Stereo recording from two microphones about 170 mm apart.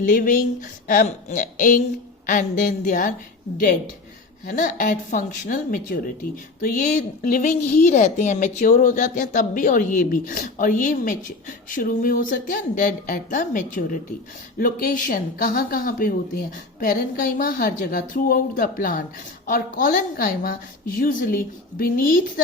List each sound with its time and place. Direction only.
0.0 s a woman's voice: 50° left (ahead or behind)
4.4 s a woman's voice: 50° left (ahead or behind)